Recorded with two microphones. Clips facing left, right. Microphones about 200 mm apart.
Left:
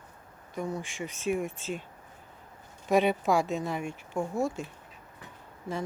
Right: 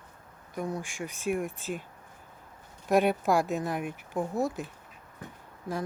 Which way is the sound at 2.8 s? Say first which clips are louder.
Even; 10° right (ahead or behind).